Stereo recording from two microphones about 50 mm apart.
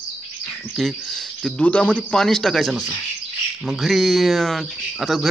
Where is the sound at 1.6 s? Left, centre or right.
Left.